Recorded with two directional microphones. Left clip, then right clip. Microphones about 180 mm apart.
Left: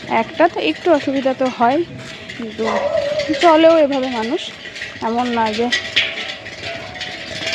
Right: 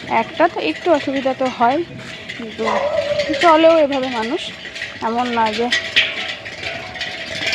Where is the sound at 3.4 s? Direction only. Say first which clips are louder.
Left 1 dB; 20° left (ahead or behind).